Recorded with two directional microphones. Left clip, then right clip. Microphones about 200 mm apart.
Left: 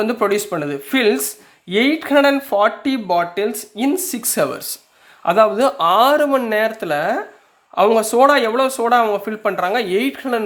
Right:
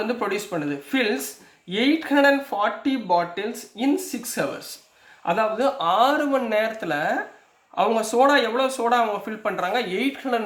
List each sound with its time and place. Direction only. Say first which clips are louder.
0.0 s speech: left 8 dB; 45° left (ahead or behind)